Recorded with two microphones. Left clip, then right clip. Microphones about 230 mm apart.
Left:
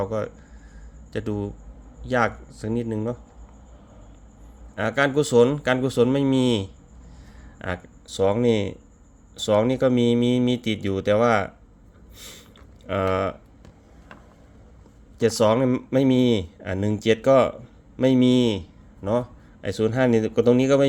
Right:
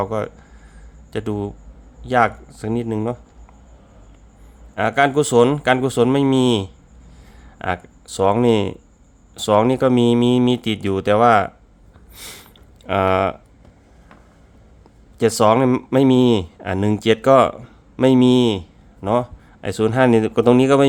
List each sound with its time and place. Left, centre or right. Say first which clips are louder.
0.0 s speech: right 4 dB; centre
4.7 s speech: right 5 dB; centre
12.1 s a sound: right 6 dB; right
15.2 s speech: right 5 dB; right